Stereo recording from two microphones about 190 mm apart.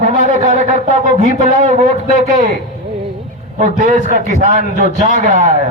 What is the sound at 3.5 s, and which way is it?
A man's voice, 40° right (ahead or behind).